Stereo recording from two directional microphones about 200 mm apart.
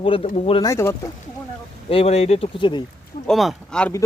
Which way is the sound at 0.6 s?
15° left (ahead or behind).